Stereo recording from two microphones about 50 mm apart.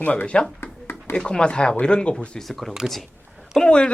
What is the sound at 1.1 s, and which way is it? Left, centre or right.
Speech, centre.